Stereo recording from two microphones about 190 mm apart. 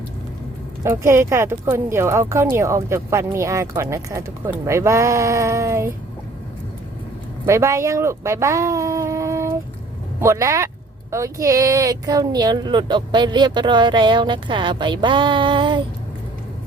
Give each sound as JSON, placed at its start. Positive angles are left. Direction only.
{"t": 0.9, "sound": "speech", "side_deg": -15}
{"t": 7.4, "sound": "speech", "side_deg": -15}